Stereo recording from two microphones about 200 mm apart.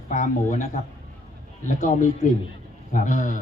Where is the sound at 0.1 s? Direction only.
40° left (ahead or behind).